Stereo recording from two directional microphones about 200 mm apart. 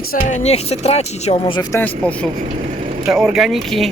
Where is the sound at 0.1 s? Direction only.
40° left (ahead or behind).